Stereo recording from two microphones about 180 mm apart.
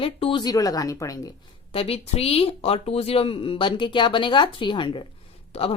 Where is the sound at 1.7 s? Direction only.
35° left (ahead or behind).